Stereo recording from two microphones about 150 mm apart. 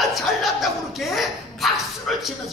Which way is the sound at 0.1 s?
Centre (ahead or behind).